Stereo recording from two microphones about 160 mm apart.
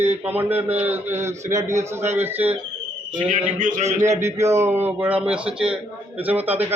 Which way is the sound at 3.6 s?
55° right (ahead or behind).